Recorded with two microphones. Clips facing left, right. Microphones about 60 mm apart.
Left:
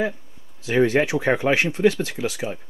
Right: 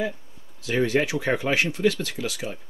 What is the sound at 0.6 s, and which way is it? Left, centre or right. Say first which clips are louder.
Speech: left 4 dB; left.